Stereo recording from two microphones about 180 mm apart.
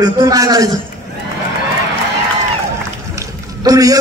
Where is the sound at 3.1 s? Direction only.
20° right (ahead or behind).